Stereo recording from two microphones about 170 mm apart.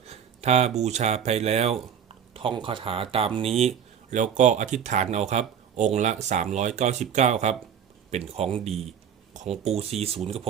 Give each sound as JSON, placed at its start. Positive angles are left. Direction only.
{"t": 0.0, "sound": "speech", "side_deg": -40}